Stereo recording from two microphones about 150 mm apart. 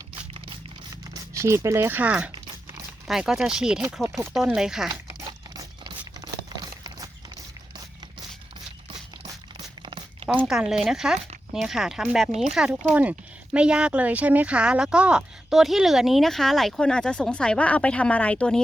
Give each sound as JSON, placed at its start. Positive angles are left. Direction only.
{"t": 1.3, "sound": "speech", "side_deg": -20}
{"t": 5.5, "sound": "a sound", "side_deg": -25}
{"t": 10.2, "sound": "speech", "side_deg": -5}